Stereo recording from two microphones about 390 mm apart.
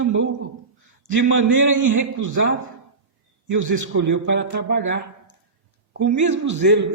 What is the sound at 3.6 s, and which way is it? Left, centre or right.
Speech, right.